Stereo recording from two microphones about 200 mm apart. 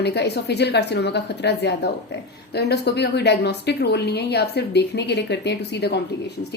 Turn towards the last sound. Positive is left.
turn(degrees=55)  # may be behind; listen again after turning